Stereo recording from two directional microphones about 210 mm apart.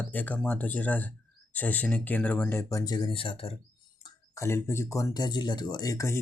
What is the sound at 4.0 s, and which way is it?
Speech, 15° left (ahead or behind).